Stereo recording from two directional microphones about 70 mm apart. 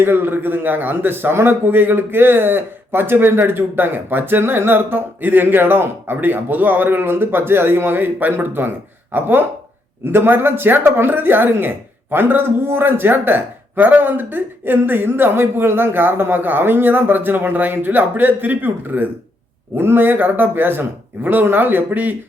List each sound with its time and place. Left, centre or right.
0.0 s a man's voice: right